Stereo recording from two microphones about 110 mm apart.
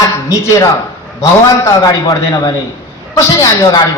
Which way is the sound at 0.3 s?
30° left (ahead or behind).